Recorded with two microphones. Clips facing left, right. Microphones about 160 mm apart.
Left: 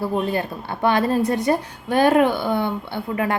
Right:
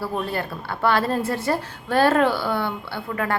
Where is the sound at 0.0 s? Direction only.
20° left (ahead or behind).